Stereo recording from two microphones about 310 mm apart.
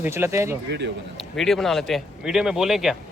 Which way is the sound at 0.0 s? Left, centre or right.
Centre.